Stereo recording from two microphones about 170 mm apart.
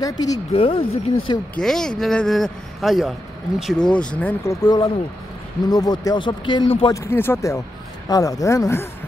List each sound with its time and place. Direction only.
0.0 s speech: 20° left (ahead or behind)
0.5 s speech: 35° left (ahead or behind)
1.5 s speech: 5° left (ahead or behind); by 6.7 s 30° left (ahead or behind)
6.9 s speech: 15° left (ahead or behind)